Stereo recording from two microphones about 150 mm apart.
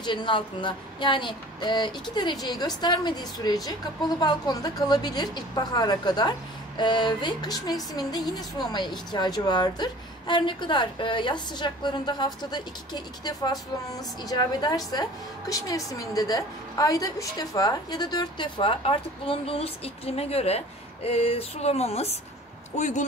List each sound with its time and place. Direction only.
0.0 s a woman's voice: 30° left (ahead or behind); by 23.0 s 50° left (ahead or behind)